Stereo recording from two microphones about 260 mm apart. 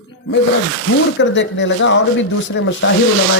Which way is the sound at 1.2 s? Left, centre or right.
Left.